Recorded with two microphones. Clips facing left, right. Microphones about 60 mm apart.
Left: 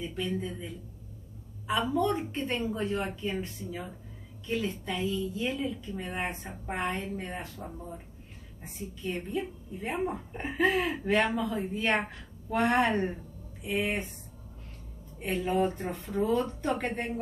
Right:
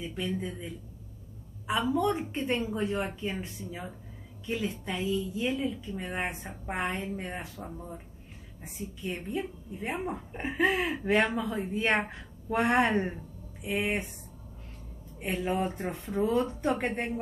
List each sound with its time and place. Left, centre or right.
0.0 s a woman's voice: centre
1.7 s a woman's voice: centre
15.1 s a woman's voice: centre